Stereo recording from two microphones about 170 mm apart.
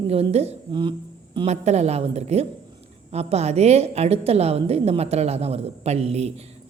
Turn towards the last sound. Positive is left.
turn(degrees=-40)  # may be behind; listen again after turning